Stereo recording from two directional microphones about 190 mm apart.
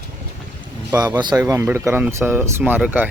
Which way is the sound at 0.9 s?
20° right (ahead or behind).